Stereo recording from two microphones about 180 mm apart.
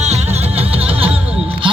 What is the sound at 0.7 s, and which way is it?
Music, 35° right (ahead or behind).